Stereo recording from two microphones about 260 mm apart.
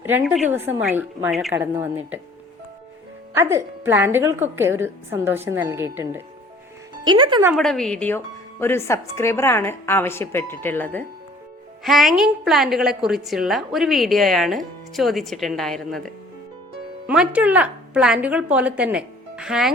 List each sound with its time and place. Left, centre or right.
0.0 s a woman's voice: centre
3.3 s a woman's voice: centre
7.5 s a woman's voice: centre